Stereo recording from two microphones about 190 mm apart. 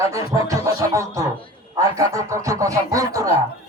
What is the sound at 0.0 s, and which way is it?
A man's voice, 15° right (ahead or behind).